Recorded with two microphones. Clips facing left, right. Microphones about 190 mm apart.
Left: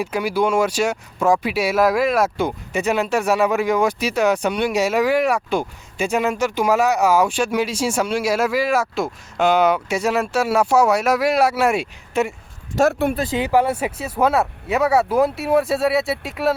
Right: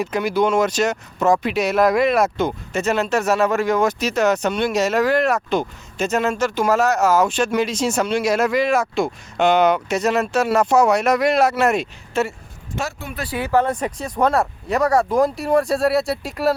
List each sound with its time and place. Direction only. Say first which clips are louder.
0.0 s speech: right 1 dB; 10° left (ahead or behind)
12.9 s speech: left 13 dB; 60° left (ahead or behind)
13.1 s speech: left 2 dB; 20° left (ahead or behind); by 16.6 s centre (ahead or behind)